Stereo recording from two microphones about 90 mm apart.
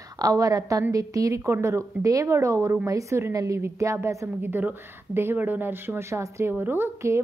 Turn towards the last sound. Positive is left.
turn(degrees=-25)  # may be behind; listen again after turning